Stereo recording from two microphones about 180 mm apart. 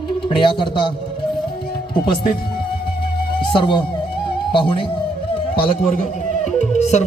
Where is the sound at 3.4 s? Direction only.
25° left (ahead or behind).